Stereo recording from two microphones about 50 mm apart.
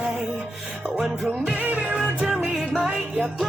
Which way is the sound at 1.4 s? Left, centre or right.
Right.